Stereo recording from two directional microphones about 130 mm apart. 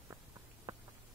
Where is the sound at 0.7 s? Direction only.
30° right (ahead or behind).